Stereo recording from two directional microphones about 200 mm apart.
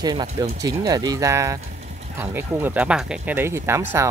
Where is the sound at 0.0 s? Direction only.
20° right (ahead or behind).